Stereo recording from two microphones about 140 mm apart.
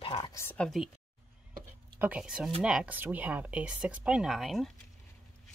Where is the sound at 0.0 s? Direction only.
40° left (ahead or behind).